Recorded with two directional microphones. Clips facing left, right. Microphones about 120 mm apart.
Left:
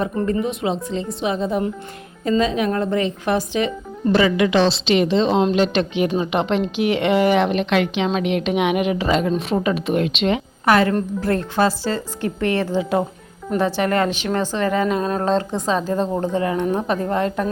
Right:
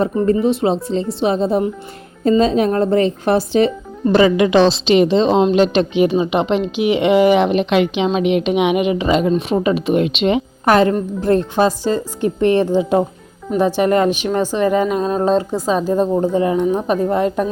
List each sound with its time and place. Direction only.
0.4 s a woman's voice: 30° right (ahead or behind)
4.6 s a woman's voice: 15° right (ahead or behind)
6.1 s a woman's voice: 10° right (ahead or behind)
10.7 s a woman's voice: 25° right (ahead or behind)